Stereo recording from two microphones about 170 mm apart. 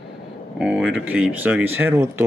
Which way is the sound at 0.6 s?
5° right (ahead or behind).